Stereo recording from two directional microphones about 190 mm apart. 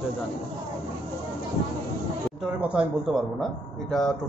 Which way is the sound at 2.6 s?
5° right (ahead or behind).